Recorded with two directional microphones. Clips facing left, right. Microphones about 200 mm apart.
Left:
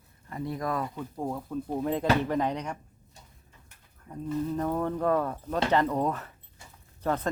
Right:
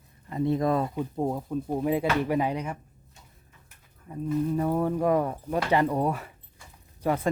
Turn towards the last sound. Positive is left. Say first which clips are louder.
# right 3 dB
turn(degrees=-10)  # may be behind; listen again after turning